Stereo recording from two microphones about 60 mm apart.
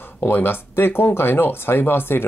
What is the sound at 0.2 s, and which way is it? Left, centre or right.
Speech, left.